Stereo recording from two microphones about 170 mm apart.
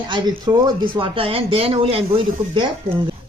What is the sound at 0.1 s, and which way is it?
Speech, 25° right (ahead or behind).